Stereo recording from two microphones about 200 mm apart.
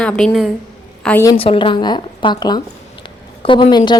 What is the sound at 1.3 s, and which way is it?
Speech, 25° left (ahead or behind).